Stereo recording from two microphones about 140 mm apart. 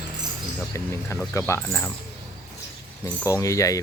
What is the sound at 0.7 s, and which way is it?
Speech, 20° left (ahead or behind).